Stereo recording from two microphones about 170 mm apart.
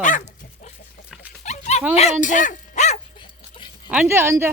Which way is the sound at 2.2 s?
50° left (ahead or behind).